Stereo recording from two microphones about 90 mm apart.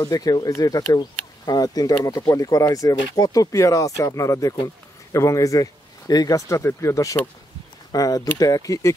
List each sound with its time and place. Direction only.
0.1 s speech: 45° left (ahead or behind)